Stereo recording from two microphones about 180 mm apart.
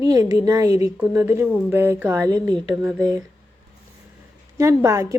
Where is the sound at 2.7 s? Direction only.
5° right (ahead or behind).